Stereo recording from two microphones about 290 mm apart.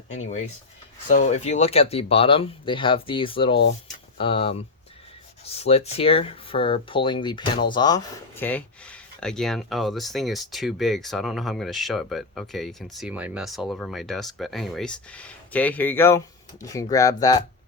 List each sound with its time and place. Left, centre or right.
1.0 s speech: left